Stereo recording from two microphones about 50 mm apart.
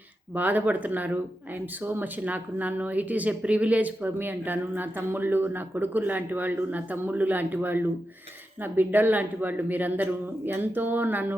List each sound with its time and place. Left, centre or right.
0.3 s speech: right